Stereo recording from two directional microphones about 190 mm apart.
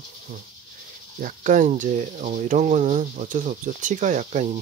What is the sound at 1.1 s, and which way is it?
Speech, 45° right (ahead or behind).